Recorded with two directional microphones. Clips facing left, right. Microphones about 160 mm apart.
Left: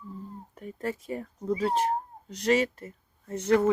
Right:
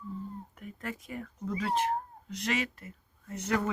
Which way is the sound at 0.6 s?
30° left (ahead or behind).